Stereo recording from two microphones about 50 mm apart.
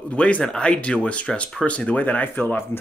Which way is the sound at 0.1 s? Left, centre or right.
Left.